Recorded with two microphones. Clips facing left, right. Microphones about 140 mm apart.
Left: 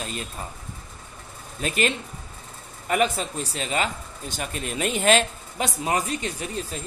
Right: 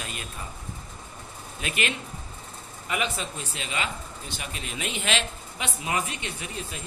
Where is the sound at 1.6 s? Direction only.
40° left (ahead or behind).